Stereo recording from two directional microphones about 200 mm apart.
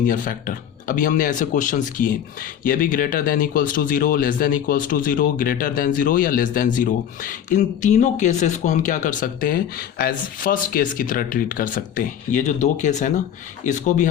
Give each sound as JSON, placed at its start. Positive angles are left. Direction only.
{"t": 0.1, "sound": "speech", "side_deg": 45}